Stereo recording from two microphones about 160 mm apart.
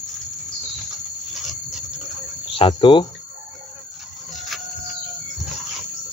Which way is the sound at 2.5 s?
35° left (ahead or behind).